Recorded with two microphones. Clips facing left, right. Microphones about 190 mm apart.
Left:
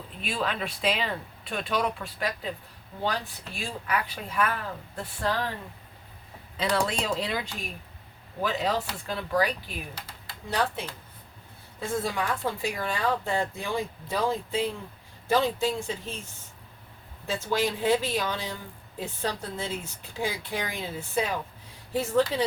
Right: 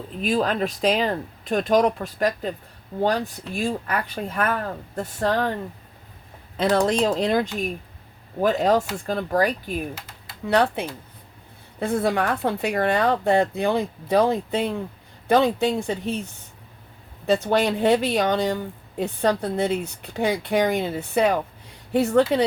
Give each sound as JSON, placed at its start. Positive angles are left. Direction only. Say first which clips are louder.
{"t": 0.2, "sound": "speech", "louder": "right 9 dB", "side_deg": -40}
{"t": 6.6, "sound": "speech", "louder": "right 8 dB", "side_deg": -45}
{"t": 10.5, "sound": "speech", "louder": "right 8 dB", "side_deg": -65}
{"t": 17.2, "sound": "speech", "louder": "right 8 dB", "side_deg": -65}